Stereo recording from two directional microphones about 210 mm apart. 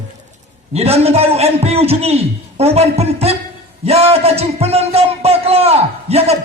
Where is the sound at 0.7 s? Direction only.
30° right (ahead or behind).